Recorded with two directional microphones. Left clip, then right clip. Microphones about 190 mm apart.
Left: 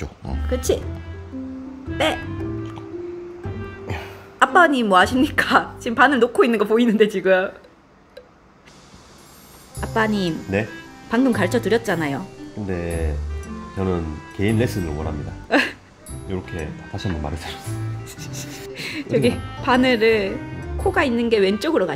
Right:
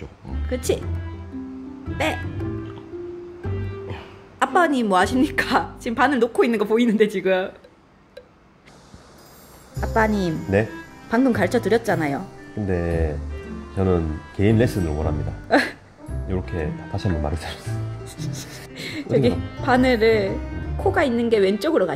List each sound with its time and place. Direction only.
0.5 s speech: 5° right (ahead or behind)
2.0 s speech: centre (ahead or behind)
4.4 s a woman's voice: 5° right (ahead or behind)
9.8 s speech: 5° left (ahead or behind)
12.6 s speech: 30° right (ahead or behind)
15.4 s music: 5° left (ahead or behind)
16.3 s speech: 30° right (ahead or behind)
18.0 s a woman's voice: 5° left (ahead or behind)